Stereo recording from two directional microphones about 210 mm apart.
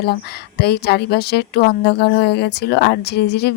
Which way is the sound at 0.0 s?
50° left (ahead or behind).